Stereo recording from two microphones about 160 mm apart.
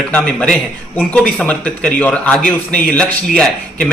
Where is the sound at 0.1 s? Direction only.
5° left (ahead or behind).